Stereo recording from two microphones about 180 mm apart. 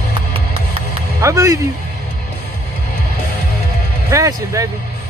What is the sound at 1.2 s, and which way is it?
Music, 15° right (ahead or behind).